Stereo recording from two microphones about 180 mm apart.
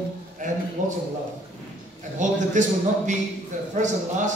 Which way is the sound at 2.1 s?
45° right (ahead or behind).